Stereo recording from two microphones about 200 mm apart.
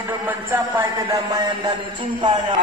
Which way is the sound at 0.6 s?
20° right (ahead or behind).